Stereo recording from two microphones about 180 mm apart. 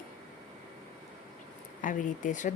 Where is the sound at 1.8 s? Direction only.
45° left (ahead or behind).